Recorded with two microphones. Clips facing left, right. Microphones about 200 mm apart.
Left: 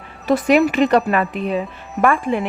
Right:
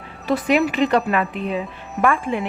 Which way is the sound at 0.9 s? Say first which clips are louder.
Left 3 dB; 40° left (ahead or behind).